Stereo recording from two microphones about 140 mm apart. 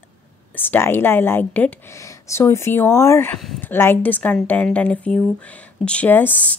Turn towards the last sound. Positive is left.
turn(degrees=10)  # may be behind; listen again after turning